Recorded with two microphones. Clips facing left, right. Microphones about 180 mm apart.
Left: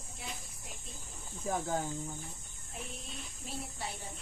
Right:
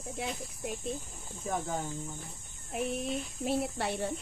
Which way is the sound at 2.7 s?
70° right (ahead or behind).